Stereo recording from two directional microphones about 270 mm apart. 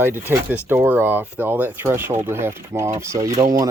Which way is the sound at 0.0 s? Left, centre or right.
Centre.